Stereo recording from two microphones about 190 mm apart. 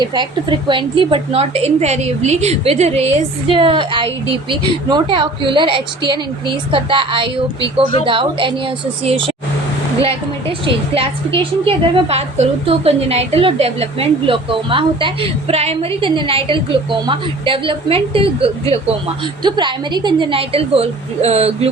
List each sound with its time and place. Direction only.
0.0 s a woman's voice: 25° right (ahead or behind)
10.7 s a woman's voice: 30° right (ahead or behind)